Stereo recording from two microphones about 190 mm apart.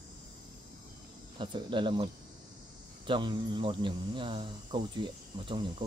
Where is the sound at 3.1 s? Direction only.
25° right (ahead or behind).